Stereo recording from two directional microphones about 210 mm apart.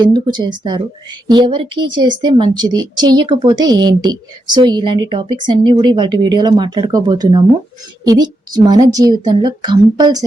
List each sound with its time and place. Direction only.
0.0 s a woman's voice: 20° right (ahead or behind)